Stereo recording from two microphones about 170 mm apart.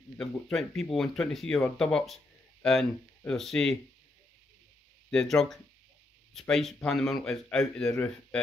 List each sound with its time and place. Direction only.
0.2 s speech: 5° left (ahead or behind)
5.1 s speech: 5° left (ahead or behind)